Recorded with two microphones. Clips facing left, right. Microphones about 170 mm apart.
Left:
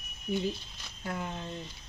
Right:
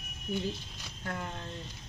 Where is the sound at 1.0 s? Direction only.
10° left (ahead or behind).